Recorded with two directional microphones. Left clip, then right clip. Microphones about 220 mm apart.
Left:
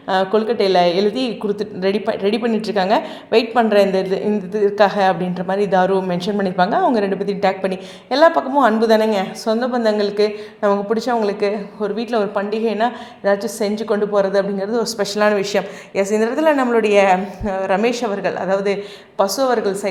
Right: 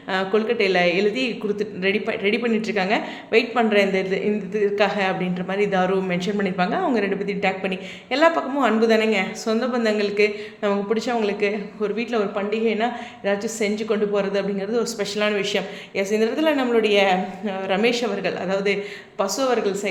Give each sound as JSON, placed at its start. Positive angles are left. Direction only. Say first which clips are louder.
{"t": 0.1, "sound": "a woman's voice", "louder": "left 5 dB", "side_deg": 20}